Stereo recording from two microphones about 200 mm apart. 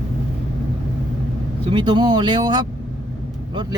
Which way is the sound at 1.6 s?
25° right (ahead or behind).